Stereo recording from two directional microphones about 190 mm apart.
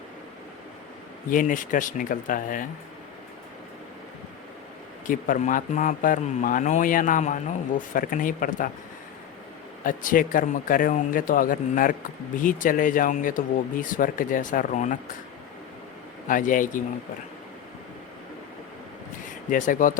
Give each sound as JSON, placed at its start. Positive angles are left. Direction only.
{"t": 1.3, "sound": "speech", "side_deg": 45}
{"t": 5.0, "sound": "speech", "side_deg": 45}
{"t": 9.8, "sound": "speech", "side_deg": 45}
{"t": 16.2, "sound": "speech", "side_deg": 45}
{"t": 19.5, "sound": "speech", "side_deg": 45}